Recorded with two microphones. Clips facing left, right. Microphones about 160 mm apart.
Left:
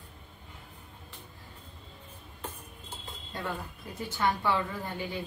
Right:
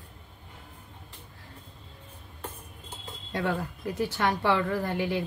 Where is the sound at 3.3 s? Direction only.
80° right.